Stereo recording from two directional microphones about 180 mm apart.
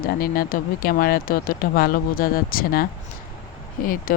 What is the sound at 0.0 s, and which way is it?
Speech, 55° left (ahead or behind).